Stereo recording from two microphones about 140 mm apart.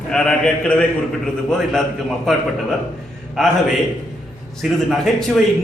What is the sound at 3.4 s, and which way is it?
Speech, centre (ahead or behind).